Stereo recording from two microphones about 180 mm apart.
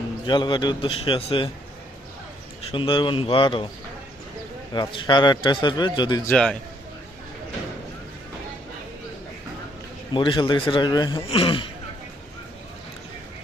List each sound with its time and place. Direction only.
0.3 s a man's voice: 25° left (ahead or behind)
2.7 s a man's voice: 30° left (ahead or behind)
4.7 s a man's voice: 25° left (ahead or behind)
6.2 s a man's voice: 5° left (ahead or behind)
10.2 s a man's voice: 25° left (ahead or behind)